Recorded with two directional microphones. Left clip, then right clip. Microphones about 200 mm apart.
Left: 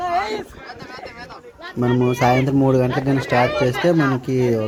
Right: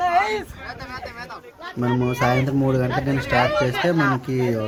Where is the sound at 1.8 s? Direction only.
25° left (ahead or behind).